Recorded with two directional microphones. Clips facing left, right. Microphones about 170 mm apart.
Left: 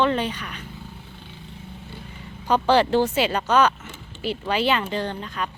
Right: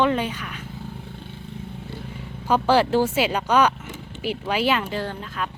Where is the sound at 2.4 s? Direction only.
5° right (ahead or behind).